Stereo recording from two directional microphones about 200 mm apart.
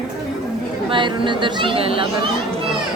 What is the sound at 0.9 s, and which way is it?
Speech, 25° right (ahead or behind).